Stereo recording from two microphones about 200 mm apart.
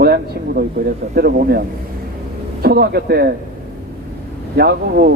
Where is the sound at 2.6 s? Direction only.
50° right (ahead or behind).